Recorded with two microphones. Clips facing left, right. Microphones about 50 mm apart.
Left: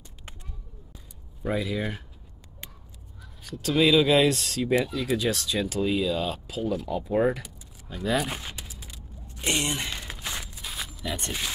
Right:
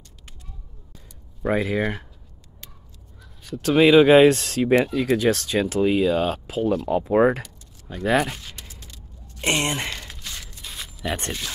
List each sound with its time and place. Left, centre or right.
1.5 s speech: right
3.6 s speech: right
7.9 s speech: right
8.3 s speech: left
8.5 s a sound: centre
9.4 s speech: right
9.9 s a sound: centre
10.6 s a sound: centre
11.1 s speech: right